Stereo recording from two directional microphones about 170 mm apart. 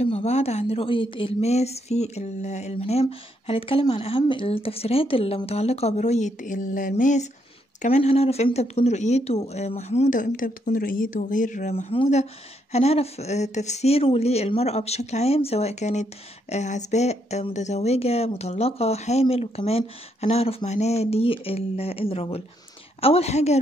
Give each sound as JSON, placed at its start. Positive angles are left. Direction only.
{"t": 0.0, "sound": "speech", "side_deg": 40}